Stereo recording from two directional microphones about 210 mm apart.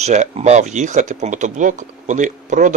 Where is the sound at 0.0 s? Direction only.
35° right (ahead or behind).